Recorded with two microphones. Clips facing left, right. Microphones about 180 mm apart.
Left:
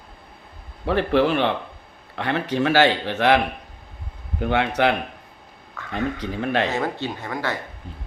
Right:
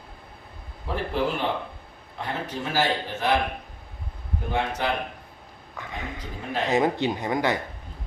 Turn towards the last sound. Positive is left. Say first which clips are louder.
# right 3 dB
turn(degrees=-20)  # may be behind; listen again after turning